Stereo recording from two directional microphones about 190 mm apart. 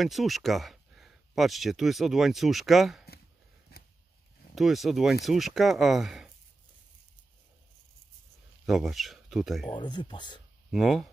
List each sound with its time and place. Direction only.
0.0 s speech: centre (ahead or behind)
3.7 s a sound: 55° left (ahead or behind)
4.6 s speech: centre (ahead or behind)
8.6 s speech: centre (ahead or behind)
9.7 s speech: 25° left (ahead or behind)
10.7 s speech: centre (ahead or behind)